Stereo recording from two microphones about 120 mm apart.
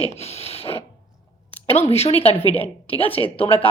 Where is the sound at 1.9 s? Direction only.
55° left (ahead or behind).